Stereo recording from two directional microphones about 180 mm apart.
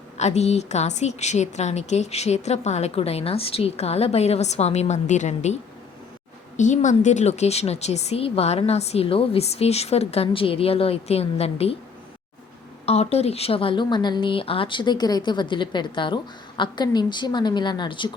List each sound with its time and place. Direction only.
0.2 s a woman's voice: 35° left (ahead or behind)
6.6 s a woman's voice: 45° left (ahead or behind)
12.8 s a woman's voice: 35° left (ahead or behind)